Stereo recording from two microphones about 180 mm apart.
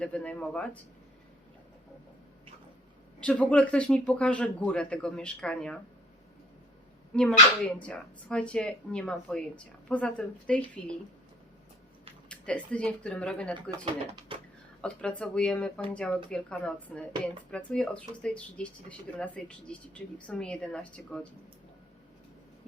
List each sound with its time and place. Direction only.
0.0 s speech: 5° left (ahead or behind)
3.2 s speech: 5° left (ahead or behind)
7.1 s speech: 5° left (ahead or behind)
12.3 s speech: 5° left (ahead or behind)
13.7 s speech: 30° right (ahead or behind)
14.8 s speech: 5° left (ahead or behind)